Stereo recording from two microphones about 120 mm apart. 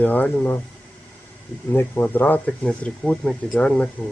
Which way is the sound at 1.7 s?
15° left (ahead or behind).